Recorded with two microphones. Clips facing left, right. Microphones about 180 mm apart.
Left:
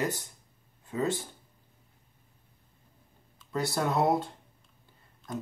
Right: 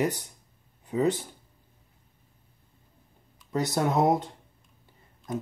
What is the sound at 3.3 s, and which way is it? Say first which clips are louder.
Speech: right 3 dB; 20° right (ahead or behind).